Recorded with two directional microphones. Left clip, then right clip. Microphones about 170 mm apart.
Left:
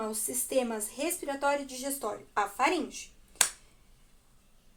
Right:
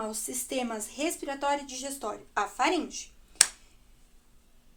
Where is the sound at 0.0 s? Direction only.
30° right (ahead or behind).